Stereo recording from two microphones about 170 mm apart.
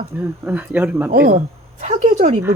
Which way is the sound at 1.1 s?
55° right (ahead or behind).